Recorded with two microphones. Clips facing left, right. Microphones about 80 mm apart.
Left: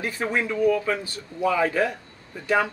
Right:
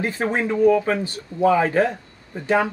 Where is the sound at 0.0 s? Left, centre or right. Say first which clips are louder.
Right 3 dB; right.